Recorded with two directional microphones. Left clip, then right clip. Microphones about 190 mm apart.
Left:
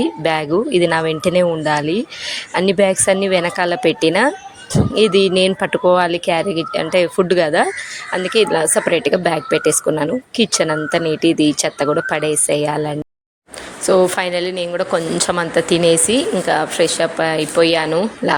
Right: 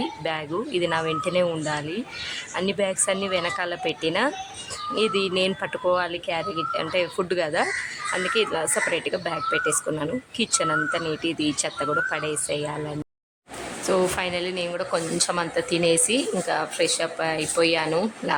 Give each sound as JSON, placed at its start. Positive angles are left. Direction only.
{"t": 0.0, "sound": "speech", "side_deg": 30}